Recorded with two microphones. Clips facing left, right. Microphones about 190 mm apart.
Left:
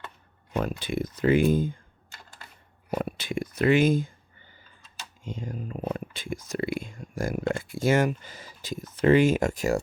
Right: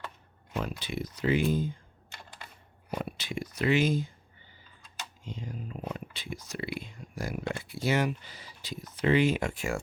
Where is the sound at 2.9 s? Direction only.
50° left (ahead or behind).